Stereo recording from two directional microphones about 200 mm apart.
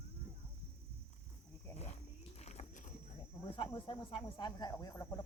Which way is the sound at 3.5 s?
25° left (ahead or behind).